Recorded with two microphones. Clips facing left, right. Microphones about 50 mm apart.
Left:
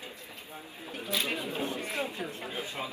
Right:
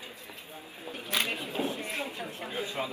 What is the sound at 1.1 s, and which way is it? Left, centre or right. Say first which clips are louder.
Speech: right 1 dB; right.